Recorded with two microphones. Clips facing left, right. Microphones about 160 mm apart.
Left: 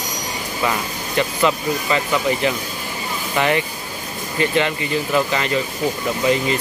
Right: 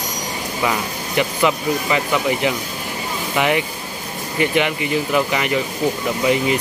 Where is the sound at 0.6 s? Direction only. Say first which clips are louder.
Right 1 dB; 15° right (ahead or behind).